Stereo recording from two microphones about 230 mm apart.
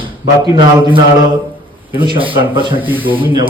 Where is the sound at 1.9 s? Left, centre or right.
Right.